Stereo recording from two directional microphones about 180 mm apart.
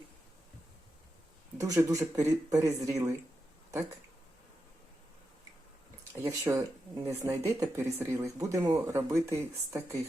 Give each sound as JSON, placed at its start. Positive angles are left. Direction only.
{"t": 1.5, "sound": "speech", "side_deg": -20}
{"t": 6.2, "sound": "speech", "side_deg": -15}